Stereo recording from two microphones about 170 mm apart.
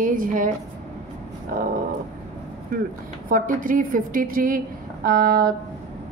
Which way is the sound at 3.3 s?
50° right (ahead or behind).